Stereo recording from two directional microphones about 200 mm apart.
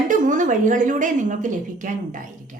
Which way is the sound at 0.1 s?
40° right (ahead or behind).